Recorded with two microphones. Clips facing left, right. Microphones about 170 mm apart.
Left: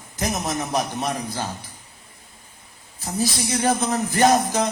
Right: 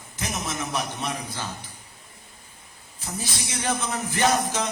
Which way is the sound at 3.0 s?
40° left (ahead or behind).